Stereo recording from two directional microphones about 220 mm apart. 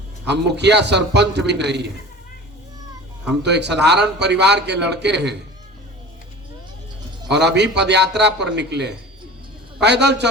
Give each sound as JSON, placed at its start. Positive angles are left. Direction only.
{"t": 0.3, "sound": "a man's voice", "side_deg": -50}
{"t": 3.4, "sound": "a man's voice", "side_deg": -50}
{"t": 7.3, "sound": "a man's voice", "side_deg": -50}